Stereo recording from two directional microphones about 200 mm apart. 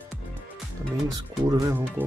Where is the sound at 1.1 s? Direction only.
15° right (ahead or behind).